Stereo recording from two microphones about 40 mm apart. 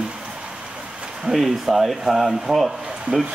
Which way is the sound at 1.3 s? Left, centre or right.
Centre.